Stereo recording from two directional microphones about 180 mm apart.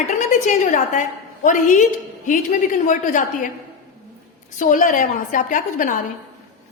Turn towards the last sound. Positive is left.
turn(degrees=45)  # may be behind; listen again after turning